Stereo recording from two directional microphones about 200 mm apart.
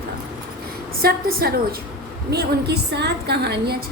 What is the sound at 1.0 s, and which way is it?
A woman's voice, 50° right (ahead or behind).